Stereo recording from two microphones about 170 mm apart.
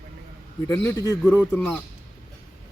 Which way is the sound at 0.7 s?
20° left (ahead or behind).